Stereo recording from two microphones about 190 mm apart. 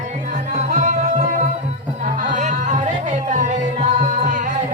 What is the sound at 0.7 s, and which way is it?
Music, 40° right (ahead or behind).